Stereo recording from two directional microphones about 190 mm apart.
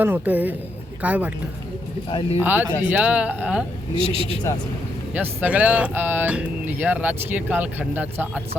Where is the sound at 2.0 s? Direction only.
25° left (ahead or behind).